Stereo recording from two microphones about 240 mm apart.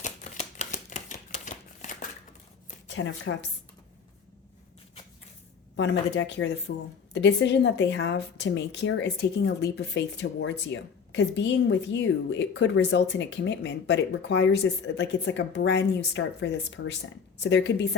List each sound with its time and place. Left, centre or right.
0.0 s a sound: left
2.8 s speech: left
5.7 s a woman's voice: left